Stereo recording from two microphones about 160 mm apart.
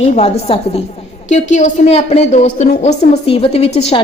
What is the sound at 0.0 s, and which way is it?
Speech, 40° left (ahead or behind).